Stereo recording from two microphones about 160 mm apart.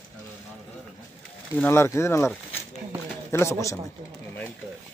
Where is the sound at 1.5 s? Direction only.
15° left (ahead or behind).